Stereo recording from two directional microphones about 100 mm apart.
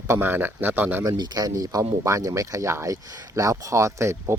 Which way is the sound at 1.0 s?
40° right (ahead or behind).